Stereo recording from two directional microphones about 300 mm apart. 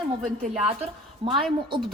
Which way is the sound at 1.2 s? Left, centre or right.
Centre.